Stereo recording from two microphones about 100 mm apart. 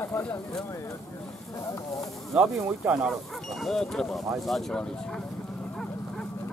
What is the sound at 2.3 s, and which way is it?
Speech, 5° right (ahead or behind).